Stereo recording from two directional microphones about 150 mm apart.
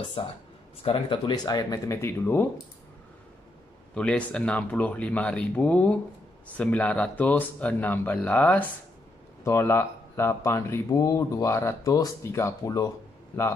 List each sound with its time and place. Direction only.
0.0 s speech: 35° left (ahead or behind); by 2.4 s 15° left (ahead or behind)
3.9 s speech: 5° left (ahead or behind); by 12.9 s 25° left (ahead or behind)